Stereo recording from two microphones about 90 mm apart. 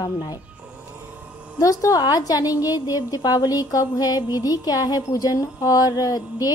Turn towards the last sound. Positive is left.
turn(degrees=45)  # may be behind; listen again after turning